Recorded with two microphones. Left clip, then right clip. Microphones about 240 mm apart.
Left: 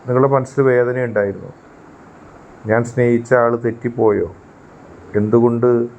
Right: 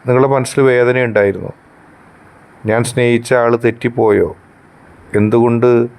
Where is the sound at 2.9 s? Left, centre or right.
Right.